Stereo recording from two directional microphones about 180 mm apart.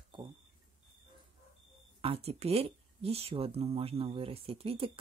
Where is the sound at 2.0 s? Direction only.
35° right (ahead or behind).